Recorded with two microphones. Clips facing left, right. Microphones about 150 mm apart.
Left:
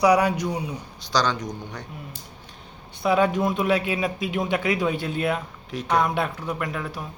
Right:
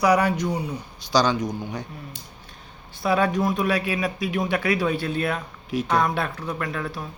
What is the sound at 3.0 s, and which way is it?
Speech, 20° left (ahead or behind).